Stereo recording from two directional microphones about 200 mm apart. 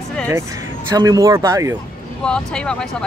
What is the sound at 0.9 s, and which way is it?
Speech, 15° right (ahead or behind).